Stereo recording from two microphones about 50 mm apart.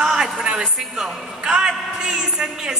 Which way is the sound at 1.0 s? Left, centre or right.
Centre.